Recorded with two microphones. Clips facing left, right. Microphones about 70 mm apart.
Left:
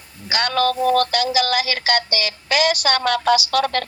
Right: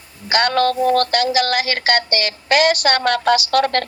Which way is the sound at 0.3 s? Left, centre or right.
Right.